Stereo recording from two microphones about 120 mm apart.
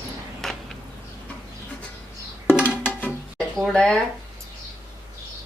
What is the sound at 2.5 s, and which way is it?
Music, 10° right (ahead or behind).